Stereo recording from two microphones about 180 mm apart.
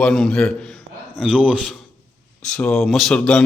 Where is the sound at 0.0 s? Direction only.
5° left (ahead or behind).